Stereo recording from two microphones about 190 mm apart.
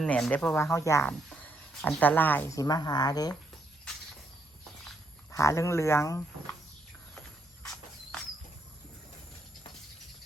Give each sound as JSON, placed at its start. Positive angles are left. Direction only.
{"t": 0.0, "sound": "speech", "side_deg": 5}
{"t": 2.6, "sound": "speech", "side_deg": 20}
{"t": 5.3, "sound": "speech", "side_deg": 15}
{"t": 7.2, "sound": "a sound", "side_deg": 5}